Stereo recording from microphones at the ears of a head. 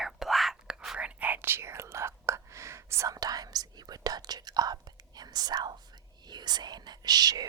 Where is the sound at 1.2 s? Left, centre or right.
Right.